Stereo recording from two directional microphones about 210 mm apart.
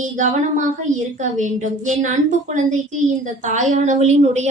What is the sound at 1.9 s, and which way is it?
A woman's voice, 35° right (ahead or behind).